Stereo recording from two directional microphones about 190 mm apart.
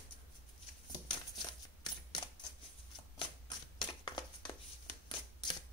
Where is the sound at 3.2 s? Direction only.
20° left (ahead or behind).